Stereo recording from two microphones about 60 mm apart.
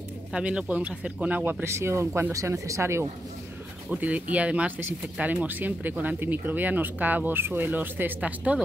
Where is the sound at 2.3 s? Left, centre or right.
Right.